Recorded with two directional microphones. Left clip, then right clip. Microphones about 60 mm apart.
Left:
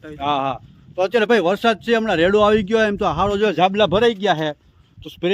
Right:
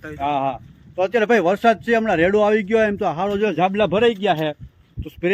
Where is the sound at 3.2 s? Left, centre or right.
Left.